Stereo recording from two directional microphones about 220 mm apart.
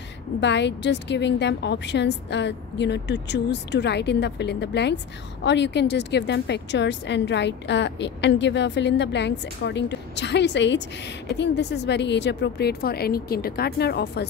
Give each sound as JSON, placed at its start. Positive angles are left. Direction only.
{"t": 0.4, "sound": "a woman's voice", "side_deg": 55}